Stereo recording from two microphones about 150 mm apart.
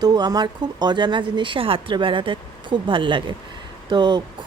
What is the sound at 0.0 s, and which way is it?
Speech, 25° right (ahead or behind).